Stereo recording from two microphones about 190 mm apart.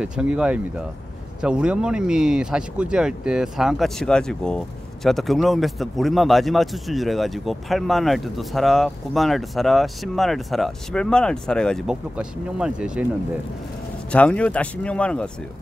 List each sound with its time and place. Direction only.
0.0 s a man's voice: 5° right (ahead or behind)
14.1 s speech: 5° left (ahead or behind)